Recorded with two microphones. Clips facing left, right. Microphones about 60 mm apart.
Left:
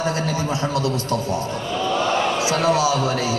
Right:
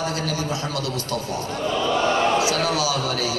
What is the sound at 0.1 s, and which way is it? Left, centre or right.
A man's voice, left.